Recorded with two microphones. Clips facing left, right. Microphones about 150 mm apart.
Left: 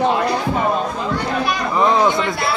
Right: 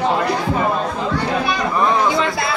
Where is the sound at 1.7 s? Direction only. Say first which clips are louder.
Left 3 dB; 20° left (ahead or behind).